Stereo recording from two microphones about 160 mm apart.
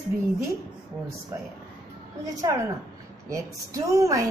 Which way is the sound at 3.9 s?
20° right (ahead or behind).